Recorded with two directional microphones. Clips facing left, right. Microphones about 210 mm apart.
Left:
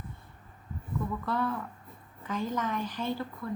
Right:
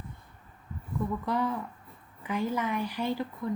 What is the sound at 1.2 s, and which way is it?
A woman's voice, 15° right (ahead or behind).